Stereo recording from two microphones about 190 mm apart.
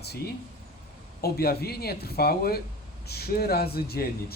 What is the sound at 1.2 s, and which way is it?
Speech, 55° left (ahead or behind).